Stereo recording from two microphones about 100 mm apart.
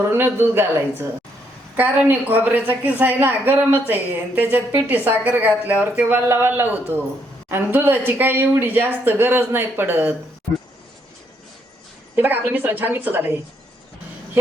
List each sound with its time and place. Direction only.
0.1 s a woman's voice: 20° right (ahead or behind)
12.1 s a woman's voice: 20° right (ahead or behind)